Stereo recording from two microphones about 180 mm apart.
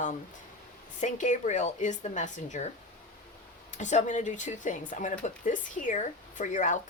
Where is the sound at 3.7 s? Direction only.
40° left (ahead or behind).